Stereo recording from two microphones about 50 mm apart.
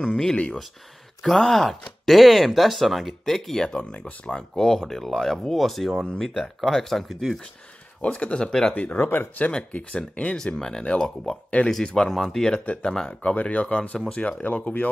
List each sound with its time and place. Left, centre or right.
0.0 s speech: centre
8.0 s speech: left
8.7 s speech: left
10.3 s speech: centre
10.9 s speech: left
12.1 s speech: centre
13.2 s speech: left
14.4 s speech: left